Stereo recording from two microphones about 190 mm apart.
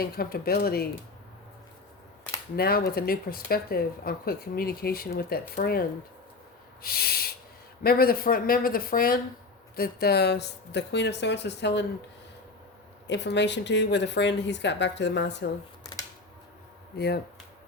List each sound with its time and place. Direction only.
0.0 s speech: 50° left (ahead or behind)
2.6 s speech: 55° left (ahead or behind)
6.8 s speech: 50° left (ahead or behind)
13.1 s speech: 65° left (ahead or behind)
15.8 s a sound: 20° left (ahead or behind)